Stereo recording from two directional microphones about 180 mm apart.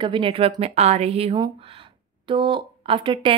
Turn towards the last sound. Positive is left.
turn(degrees=-30)  # may be behind; listen again after turning